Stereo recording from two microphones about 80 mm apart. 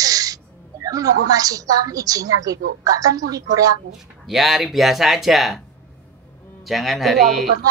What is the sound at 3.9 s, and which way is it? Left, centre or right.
Speech, centre.